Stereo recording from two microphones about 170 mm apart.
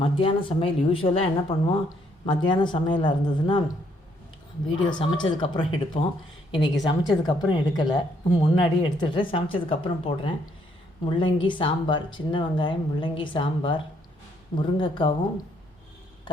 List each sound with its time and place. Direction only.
0.0 s a woman's voice: 30° left (ahead or behind)
4.9 s a woman's voice: 25° left (ahead or behind)